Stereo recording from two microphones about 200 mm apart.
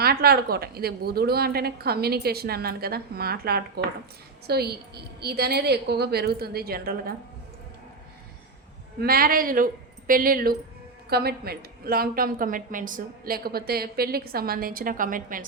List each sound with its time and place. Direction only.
0.0 s a woman's voice: 50° right (ahead or behind)
9.0 s a woman's voice: 50° right (ahead or behind)